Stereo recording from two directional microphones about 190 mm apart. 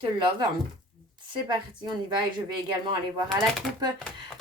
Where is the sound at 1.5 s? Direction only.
25° right (ahead or behind).